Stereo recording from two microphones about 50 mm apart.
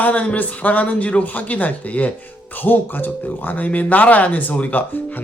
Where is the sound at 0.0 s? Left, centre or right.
Left.